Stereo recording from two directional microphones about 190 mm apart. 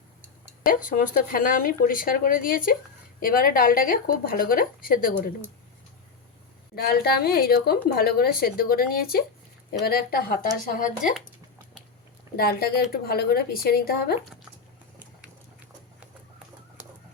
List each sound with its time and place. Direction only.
0.6 s a woman's voice: 45° left (ahead or behind)
6.7 s a woman's voice: 55° left (ahead or behind)
12.4 s a woman's voice: 55° left (ahead or behind)